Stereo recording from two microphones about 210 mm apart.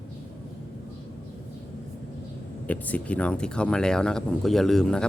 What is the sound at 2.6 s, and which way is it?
Speech, 5° left (ahead or behind).